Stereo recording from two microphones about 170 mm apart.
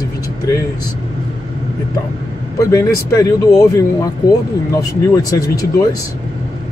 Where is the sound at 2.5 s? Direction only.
20° left (ahead or behind).